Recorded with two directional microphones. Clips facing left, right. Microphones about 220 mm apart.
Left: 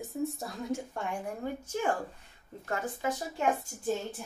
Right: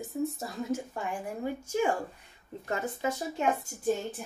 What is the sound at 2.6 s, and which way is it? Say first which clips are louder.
Speech: right 2 dB; 25° right (ahead or behind).